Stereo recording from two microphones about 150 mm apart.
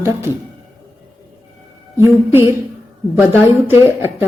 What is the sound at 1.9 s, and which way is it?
Speech, 15° right (ahead or behind).